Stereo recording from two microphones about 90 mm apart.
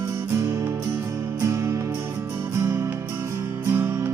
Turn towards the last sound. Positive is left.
turn(degrees=-25)  # may be behind; listen again after turning